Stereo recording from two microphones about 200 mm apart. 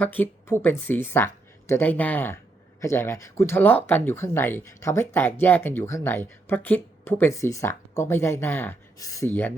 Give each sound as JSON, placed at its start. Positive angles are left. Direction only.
{"t": 0.0, "sound": "speech", "side_deg": 10}